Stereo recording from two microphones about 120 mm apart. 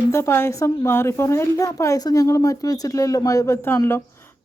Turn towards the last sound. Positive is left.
turn(degrees=20)  # may be behind; listen again after turning